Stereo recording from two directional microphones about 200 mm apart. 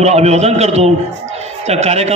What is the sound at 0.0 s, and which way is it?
A man's voice, 35° right (ahead or behind).